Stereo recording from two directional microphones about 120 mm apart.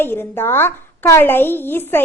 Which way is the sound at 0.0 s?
20° left (ahead or behind).